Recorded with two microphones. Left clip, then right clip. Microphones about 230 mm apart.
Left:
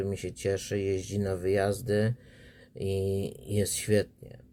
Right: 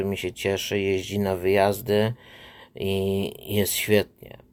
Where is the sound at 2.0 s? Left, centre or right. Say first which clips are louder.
Right 6 dB; centre.